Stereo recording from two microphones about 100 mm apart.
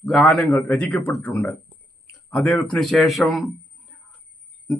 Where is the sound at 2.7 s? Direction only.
Centre (ahead or behind).